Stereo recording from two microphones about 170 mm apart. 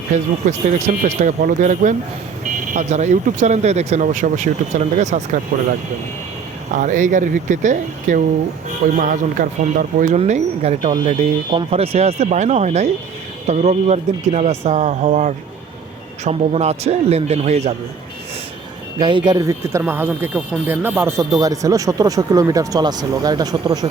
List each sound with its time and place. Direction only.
0.1 s speech: 45° right (ahead or behind)
6.7 s speech: 50° right (ahead or behind)
10.2 s speech: 40° right (ahead or behind)
18.9 s speech: 30° right (ahead or behind)